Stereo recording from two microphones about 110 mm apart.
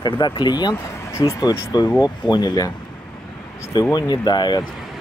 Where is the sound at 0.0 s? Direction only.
45° left (ahead or behind).